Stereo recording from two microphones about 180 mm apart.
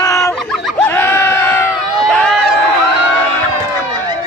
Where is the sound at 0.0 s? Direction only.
15° left (ahead or behind).